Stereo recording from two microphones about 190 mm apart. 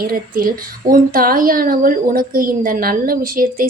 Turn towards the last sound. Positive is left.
turn(degrees=-50)  # may be behind; listen again after turning